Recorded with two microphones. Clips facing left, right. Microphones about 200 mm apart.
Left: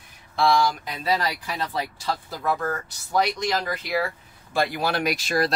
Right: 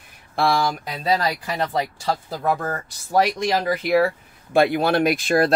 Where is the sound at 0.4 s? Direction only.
55° right (ahead or behind).